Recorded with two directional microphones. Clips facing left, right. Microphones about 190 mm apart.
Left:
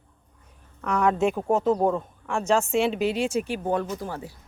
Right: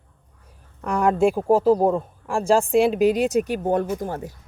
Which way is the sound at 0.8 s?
35° right (ahead or behind).